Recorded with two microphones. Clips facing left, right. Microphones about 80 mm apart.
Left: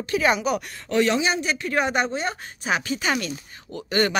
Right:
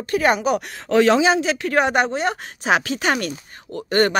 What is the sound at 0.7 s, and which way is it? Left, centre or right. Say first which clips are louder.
A woman's voice: right 7 dB; right.